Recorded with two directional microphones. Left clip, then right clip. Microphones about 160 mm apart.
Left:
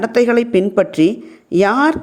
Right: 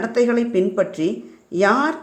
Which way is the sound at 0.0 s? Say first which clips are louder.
Left 5 dB; 45° left (ahead or behind).